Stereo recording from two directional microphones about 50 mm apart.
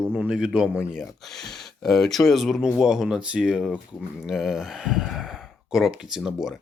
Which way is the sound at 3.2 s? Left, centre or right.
Centre.